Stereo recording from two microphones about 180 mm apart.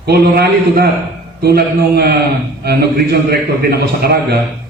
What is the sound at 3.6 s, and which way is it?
Speech, 60° right (ahead or behind).